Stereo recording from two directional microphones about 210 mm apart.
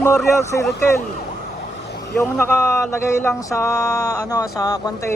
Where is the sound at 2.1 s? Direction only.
10° left (ahead or behind).